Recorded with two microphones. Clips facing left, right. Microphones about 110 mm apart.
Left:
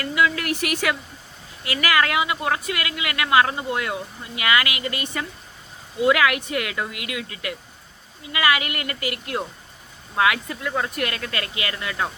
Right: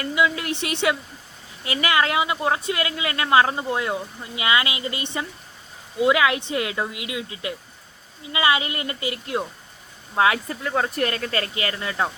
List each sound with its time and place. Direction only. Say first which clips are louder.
0.0 s a woman's voice: even; 25° right (ahead or behind)